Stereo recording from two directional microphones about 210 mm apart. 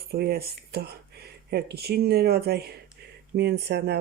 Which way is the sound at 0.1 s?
50° right (ahead or behind).